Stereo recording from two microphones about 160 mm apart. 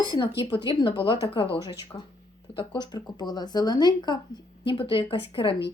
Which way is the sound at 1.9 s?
20° left (ahead or behind).